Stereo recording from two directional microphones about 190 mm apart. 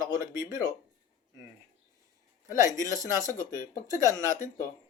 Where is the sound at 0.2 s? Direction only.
15° right (ahead or behind).